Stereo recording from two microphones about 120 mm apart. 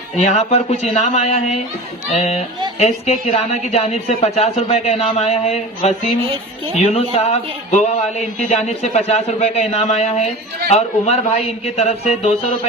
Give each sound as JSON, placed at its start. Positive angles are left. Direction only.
{"t": 0.2, "sound": "a man's voice", "side_deg": 70}